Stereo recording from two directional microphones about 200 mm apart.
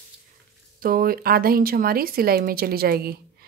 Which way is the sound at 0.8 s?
45° right (ahead or behind).